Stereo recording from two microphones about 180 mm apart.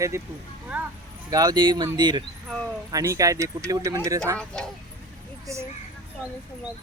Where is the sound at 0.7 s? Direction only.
10° right (ahead or behind).